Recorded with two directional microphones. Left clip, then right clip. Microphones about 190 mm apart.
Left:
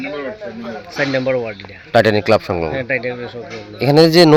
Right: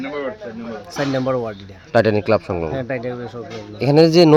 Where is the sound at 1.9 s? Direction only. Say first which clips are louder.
Left 3 dB; 5° right (ahead or behind).